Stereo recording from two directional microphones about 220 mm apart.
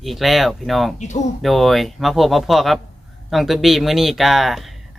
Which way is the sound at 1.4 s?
Centre (ahead or behind).